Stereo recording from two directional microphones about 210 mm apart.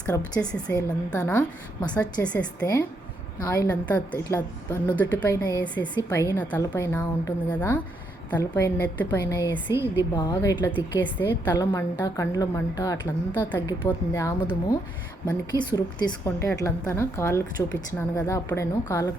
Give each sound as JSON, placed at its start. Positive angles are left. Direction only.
{"t": 0.3, "sound": "a woman's voice", "side_deg": 5}
{"t": 2.1, "sound": "speech", "side_deg": 5}
{"t": 2.4, "sound": "a woman's voice", "side_deg": 15}
{"t": 11.0, "sound": "a woman's voice", "side_deg": 10}